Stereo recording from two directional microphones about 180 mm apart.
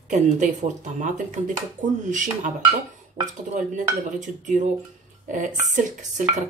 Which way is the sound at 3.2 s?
25° right (ahead or behind).